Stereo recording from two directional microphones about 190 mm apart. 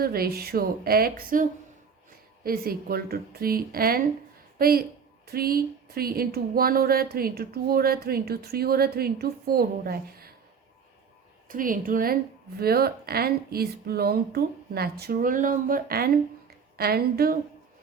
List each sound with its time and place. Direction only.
0.0 s a woman's voice: 55° right (ahead or behind)
11.4 s a woman's voice: 45° right (ahead or behind)